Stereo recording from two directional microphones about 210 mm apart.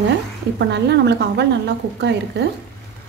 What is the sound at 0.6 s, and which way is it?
A woman's voice, 55° right (ahead or behind).